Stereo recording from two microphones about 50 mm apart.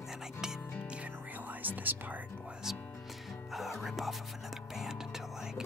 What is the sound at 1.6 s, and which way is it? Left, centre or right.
Speech, right.